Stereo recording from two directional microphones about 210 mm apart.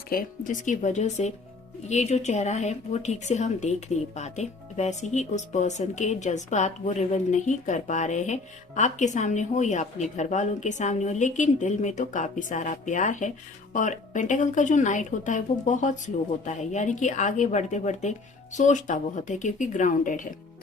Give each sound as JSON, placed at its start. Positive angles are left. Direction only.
{"t": 0.1, "sound": "a woman's voice", "side_deg": 40}